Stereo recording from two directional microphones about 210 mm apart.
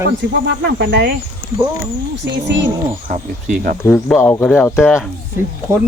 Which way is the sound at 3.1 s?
40° right (ahead or behind).